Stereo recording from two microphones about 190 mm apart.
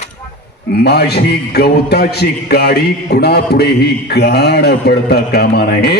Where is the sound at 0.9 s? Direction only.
60° left (ahead or behind).